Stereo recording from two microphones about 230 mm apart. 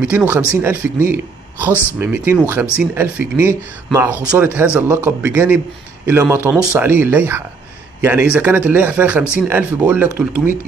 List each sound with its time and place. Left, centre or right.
0.0 s speech: centre
1.7 s speech: centre
2.0 s speech: centre